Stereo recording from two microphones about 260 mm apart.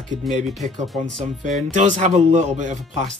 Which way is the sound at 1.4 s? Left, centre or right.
Right.